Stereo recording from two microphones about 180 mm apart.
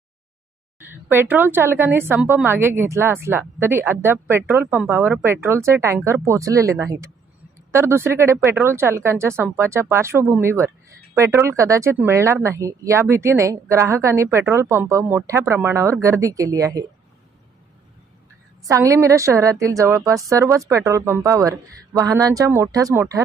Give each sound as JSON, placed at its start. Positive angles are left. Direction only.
{"t": 1.1, "sound": "a woman's voice", "side_deg": -10}
{"t": 18.6, "sound": "a woman's voice", "side_deg": -15}